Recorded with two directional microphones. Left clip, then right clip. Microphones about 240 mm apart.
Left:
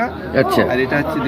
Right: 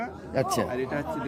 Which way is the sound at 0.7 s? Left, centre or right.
Centre.